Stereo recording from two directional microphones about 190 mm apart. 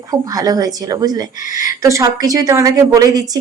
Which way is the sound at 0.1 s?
20° right (ahead or behind).